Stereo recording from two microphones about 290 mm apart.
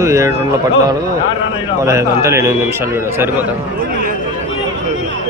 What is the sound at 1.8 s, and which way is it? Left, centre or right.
A man's voice, centre.